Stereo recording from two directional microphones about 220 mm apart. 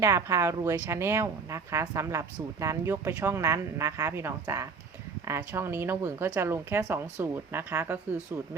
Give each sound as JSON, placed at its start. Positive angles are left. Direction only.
{"t": 0.0, "sound": "speech", "side_deg": -15}